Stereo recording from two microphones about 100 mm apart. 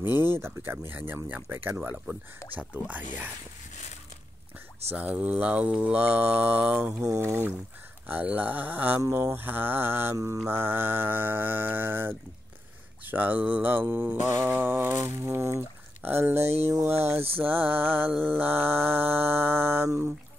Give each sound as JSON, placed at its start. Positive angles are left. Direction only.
{"t": 0.0, "sound": "mantra", "side_deg": -20}
{"t": 4.9, "sound": "mantra", "side_deg": -15}
{"t": 7.0, "sound": "mantra", "side_deg": -30}
{"t": 9.0, "sound": "mantra", "side_deg": -30}